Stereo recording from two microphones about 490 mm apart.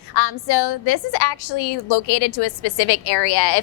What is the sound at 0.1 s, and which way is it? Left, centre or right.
A woman's voice, left.